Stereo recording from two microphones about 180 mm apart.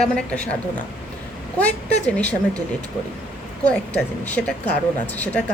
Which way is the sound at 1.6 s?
10° left (ahead or behind).